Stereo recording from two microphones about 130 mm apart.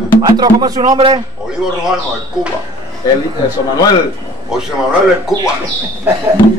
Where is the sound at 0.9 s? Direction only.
45° right (ahead or behind).